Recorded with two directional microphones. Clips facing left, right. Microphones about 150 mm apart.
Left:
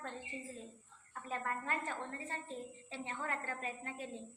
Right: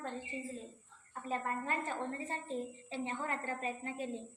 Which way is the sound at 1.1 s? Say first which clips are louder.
Right 3 dB; 15° right (ahead or behind).